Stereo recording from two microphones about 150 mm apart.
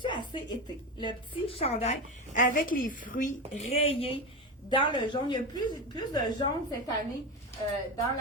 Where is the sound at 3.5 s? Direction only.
50° left (ahead or behind).